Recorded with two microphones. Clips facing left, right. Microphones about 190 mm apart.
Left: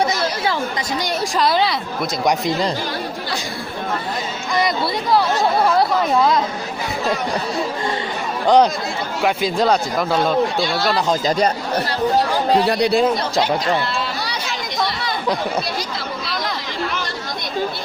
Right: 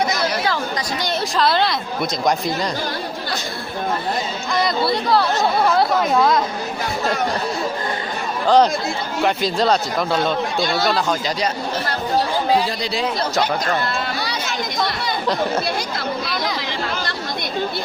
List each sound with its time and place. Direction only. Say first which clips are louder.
1.4 s speech: even; 10° left (ahead or behind)
8.4 s speech: left 1 dB; 10° left (ahead or behind)
12.6 s speech: left 7 dB; 60° left (ahead or behind)